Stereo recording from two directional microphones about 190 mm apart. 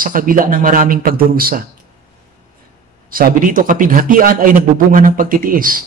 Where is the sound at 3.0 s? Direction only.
50° right (ahead or behind).